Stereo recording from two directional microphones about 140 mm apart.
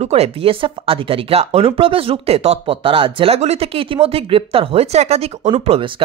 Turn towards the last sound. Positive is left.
turn(degrees=-40)  # may be behind; listen again after turning